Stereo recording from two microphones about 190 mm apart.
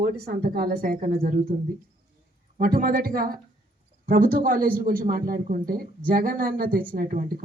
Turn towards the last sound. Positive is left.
turn(degrees=-50)  # may be behind; listen again after turning